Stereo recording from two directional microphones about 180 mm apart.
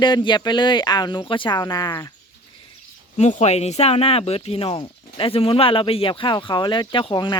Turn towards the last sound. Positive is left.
turn(degrees=25)  # may be behind; listen again after turning